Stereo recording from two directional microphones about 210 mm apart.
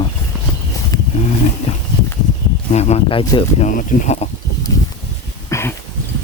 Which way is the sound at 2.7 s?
30° left (ahead or behind).